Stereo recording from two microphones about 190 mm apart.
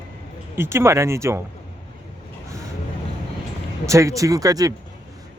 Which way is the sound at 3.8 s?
15° right (ahead or behind).